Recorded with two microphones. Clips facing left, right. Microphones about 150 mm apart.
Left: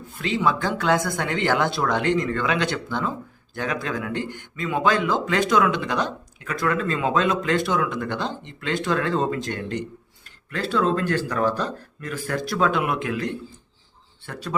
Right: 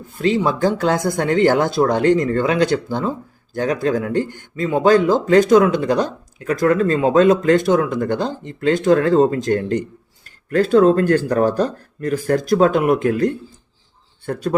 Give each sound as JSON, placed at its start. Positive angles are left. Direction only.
{"t": 0.2, "sound": "speech", "side_deg": -40}